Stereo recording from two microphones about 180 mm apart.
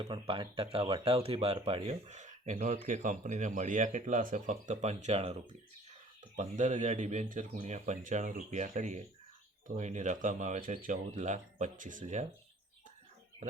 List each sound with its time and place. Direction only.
0.0 s speech: 25° right (ahead or behind); by 12.2 s 45° right (ahead or behind)